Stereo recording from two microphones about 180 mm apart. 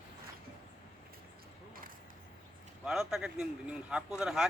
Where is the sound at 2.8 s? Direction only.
Centre (ahead or behind).